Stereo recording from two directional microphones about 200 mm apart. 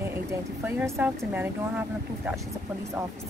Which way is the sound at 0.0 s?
10° right (ahead or behind).